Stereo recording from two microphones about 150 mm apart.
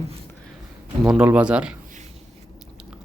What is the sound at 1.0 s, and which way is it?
Speech, 5° right (ahead or behind).